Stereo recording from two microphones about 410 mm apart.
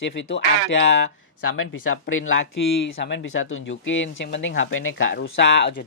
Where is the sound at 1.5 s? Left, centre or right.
Left.